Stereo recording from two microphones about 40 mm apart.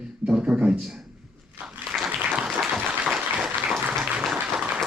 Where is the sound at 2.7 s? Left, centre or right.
Right.